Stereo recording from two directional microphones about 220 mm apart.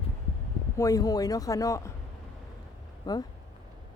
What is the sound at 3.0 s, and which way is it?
Speech, 15° left (ahead or behind).